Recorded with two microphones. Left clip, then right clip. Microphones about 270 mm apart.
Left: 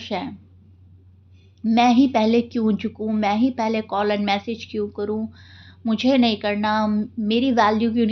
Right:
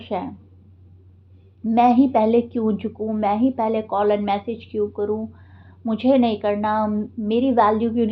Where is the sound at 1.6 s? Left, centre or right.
Left.